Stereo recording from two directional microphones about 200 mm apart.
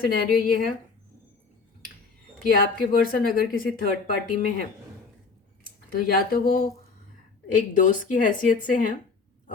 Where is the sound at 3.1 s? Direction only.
45° left (ahead or behind).